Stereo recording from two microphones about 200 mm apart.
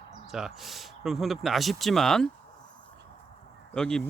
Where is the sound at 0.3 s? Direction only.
Centre (ahead or behind).